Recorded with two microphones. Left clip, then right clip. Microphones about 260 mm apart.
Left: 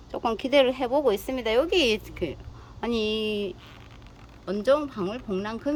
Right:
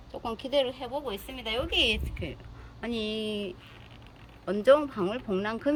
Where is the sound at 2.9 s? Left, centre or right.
Left.